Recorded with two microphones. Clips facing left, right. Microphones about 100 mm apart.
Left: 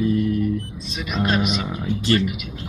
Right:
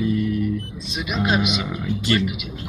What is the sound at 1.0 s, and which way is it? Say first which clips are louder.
Speech: even; 10° right (ahead or behind).